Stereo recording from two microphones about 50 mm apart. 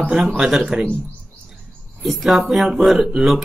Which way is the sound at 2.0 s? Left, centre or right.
Centre.